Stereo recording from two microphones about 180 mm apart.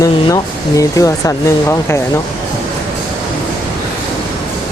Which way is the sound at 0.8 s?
20° left (ahead or behind).